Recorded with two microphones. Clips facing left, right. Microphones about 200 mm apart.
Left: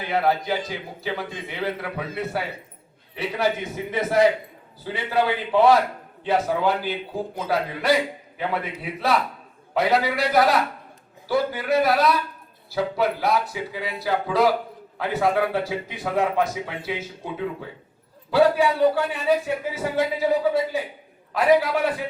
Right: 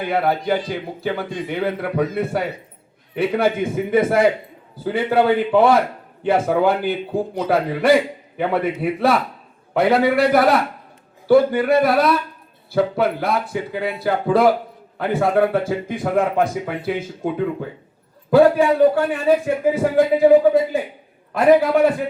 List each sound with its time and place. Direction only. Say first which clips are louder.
0.0 s a man's voice: right 3 dB; 55° right (ahead or behind)